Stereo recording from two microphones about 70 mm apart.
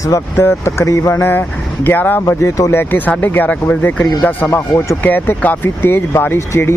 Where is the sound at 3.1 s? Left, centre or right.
Left.